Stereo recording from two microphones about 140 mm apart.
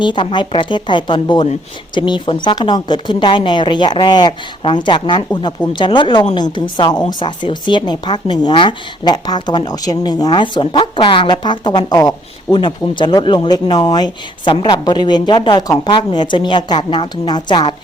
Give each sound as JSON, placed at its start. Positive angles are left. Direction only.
{"t": 0.0, "sound": "speech", "side_deg": 35}